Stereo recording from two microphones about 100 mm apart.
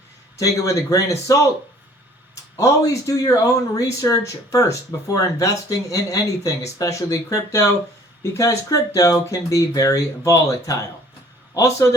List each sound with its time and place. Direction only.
0.3 s speech: 35° left (ahead or behind)
2.3 s speech: 35° left (ahead or behind)